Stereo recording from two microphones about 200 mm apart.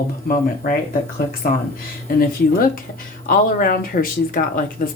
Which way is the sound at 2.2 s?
45° left (ahead or behind).